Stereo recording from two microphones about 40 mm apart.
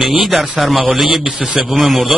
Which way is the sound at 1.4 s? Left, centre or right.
Right.